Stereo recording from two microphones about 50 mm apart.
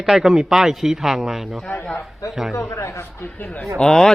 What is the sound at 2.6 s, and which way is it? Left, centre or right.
Speech, left.